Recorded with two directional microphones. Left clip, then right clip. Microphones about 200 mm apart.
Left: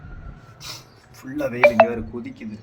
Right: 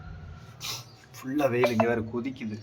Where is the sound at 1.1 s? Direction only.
10° right (ahead or behind).